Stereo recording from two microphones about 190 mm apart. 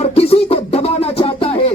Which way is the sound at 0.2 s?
30° left (ahead or behind).